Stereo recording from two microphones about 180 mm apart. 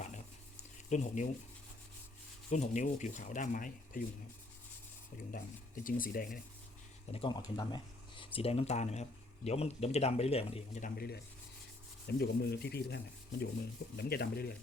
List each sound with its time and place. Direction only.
0.9 s speech: 40° left (ahead or behind)
2.5 s speech: 40° left (ahead or behind)
5.8 s speech: 50° left (ahead or behind)
7.1 s speech: 30° left (ahead or behind)
10.8 s speech: 60° left (ahead or behind)